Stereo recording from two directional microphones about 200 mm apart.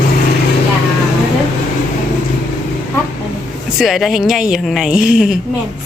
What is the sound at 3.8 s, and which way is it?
A woman's voice, centre (ahead or behind).